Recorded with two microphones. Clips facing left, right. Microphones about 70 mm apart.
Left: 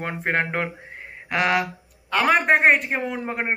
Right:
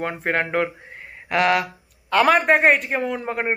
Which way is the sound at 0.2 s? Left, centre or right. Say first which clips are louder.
Right 2 dB; centre.